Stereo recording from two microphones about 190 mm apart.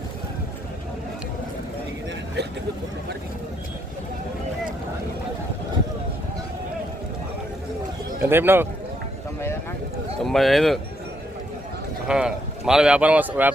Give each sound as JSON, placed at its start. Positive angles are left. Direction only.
{"t": 8.2, "sound": "speech", "side_deg": -10}
{"t": 10.2, "sound": "speech", "side_deg": 0}
{"t": 12.0, "sound": "speech", "side_deg": -5}